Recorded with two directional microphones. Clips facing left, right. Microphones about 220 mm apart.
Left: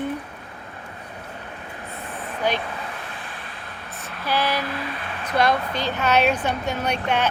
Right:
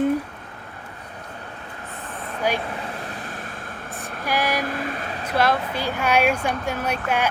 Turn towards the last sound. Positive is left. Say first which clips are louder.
# left 1 dB
turn(degrees=-10)  # may be behind; listen again after turning